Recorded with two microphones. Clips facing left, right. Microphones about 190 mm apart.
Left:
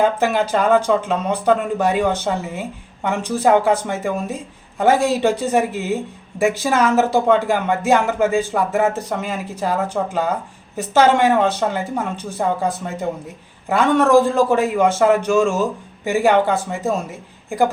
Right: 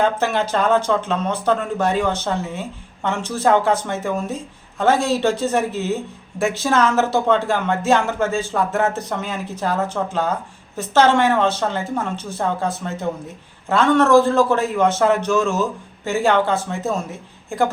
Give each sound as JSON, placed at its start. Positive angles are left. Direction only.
{"t": 0.0, "sound": "speech", "side_deg": 10}